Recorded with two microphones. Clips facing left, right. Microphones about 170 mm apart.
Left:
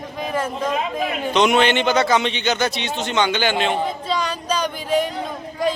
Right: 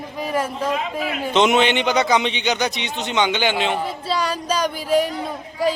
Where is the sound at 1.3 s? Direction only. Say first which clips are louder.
Even; 20° right (ahead or behind).